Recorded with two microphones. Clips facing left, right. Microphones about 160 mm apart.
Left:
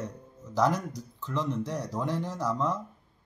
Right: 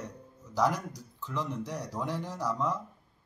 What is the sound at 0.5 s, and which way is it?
A man's voice, 10° right (ahead or behind).